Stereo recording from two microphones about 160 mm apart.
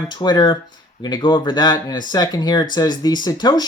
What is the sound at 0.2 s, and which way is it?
Speech, 25° left (ahead or behind).